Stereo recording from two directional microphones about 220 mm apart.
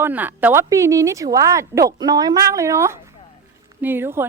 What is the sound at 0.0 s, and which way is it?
A woman's voice, 10° right (ahead or behind).